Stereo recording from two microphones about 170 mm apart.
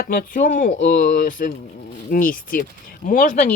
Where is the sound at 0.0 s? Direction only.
55° left (ahead or behind).